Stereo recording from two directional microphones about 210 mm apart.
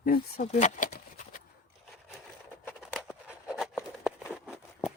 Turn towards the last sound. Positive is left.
turn(degrees=0)  # may be behind; listen again after turning